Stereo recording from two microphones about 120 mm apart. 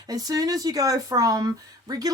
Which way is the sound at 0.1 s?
30° right (ahead or behind).